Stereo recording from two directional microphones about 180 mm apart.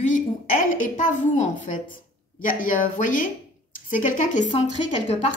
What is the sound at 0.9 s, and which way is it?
A woman's voice, 40° left (ahead or behind).